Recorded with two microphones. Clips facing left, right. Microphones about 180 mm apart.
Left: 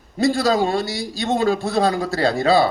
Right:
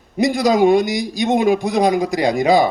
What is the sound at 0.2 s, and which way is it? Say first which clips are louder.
A man's voice: right 3 dB; 15° right (ahead or behind).